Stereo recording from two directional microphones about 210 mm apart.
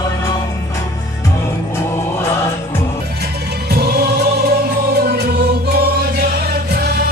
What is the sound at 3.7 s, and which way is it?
Music, 50° right (ahead or behind).